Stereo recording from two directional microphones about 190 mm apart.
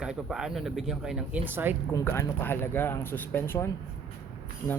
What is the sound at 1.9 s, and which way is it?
Speech, 15° left (ahead or behind).